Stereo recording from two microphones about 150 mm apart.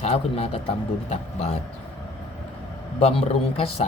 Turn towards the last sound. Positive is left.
turn(degrees=40)  # may be behind; listen again after turning